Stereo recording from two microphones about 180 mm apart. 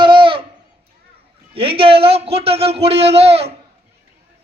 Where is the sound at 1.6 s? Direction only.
30° right (ahead or behind).